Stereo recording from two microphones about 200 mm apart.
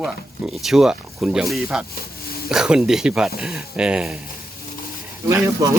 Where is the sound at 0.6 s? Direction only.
5° right (ahead or behind).